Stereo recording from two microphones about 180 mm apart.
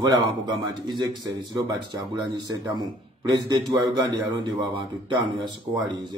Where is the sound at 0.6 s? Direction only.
25° right (ahead or behind).